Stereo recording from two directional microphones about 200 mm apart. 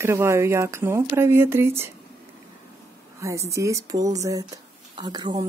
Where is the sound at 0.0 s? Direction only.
15° right (ahead or behind).